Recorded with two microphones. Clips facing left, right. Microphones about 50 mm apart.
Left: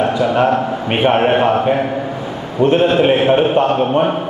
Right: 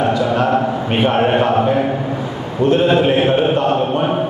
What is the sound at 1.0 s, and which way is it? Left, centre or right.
Speech, left.